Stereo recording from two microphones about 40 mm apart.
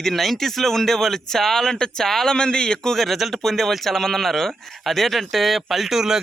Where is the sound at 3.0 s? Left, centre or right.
Centre.